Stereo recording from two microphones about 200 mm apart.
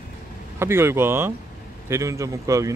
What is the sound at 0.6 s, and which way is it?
Speech, 10° right (ahead or behind).